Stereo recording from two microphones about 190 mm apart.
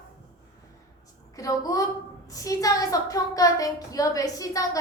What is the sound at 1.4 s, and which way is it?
A woman's voice, 20° left (ahead or behind).